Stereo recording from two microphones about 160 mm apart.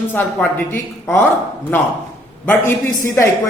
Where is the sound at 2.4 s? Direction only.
15° left (ahead or behind).